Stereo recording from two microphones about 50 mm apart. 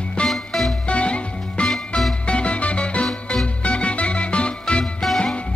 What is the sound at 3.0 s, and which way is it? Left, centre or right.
Music, centre.